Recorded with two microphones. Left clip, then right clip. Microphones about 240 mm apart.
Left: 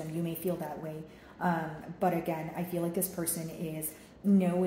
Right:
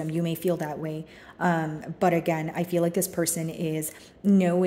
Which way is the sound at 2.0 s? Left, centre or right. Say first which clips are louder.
Right 7 dB; right.